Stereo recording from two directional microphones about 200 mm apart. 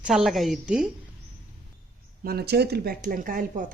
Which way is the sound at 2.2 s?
50° right (ahead or behind).